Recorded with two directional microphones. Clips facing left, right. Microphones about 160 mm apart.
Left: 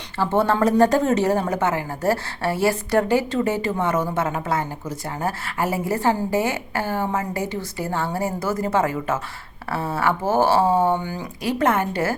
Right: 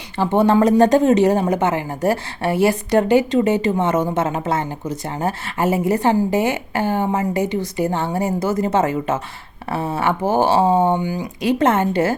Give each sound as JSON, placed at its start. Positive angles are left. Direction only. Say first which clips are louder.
{"t": 0.2, "sound": "speech", "louder": "right 4 dB", "side_deg": -15}